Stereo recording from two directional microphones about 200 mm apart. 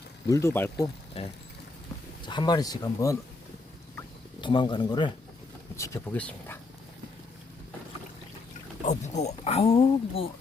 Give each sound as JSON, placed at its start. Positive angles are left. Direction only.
{"t": 0.3, "sound": "speech", "side_deg": 15}
{"t": 1.2, "sound": "speech", "side_deg": 30}
{"t": 4.4, "sound": "speech", "side_deg": 25}
{"t": 8.8, "sound": "speech", "side_deg": 35}